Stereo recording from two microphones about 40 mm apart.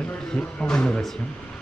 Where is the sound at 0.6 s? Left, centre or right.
Left.